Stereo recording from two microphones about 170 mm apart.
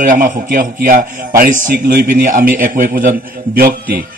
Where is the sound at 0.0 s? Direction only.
55° right (ahead or behind).